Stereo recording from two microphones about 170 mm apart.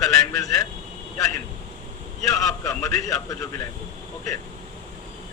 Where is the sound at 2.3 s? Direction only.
20° left (ahead or behind).